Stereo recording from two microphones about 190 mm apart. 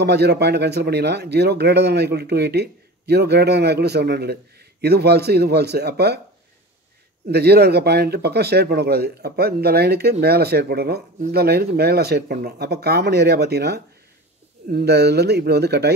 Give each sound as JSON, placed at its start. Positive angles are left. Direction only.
{"t": 0.0, "sound": "speech", "side_deg": -60}
{"t": 7.2, "sound": "speech", "side_deg": -60}